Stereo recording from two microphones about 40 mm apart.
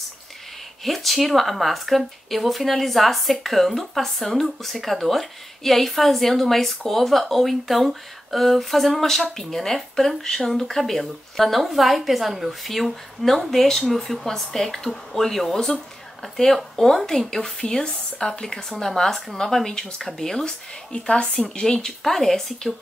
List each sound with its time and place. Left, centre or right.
0.8 s speech: centre
20.4 s speech: left
22.0 s speech: centre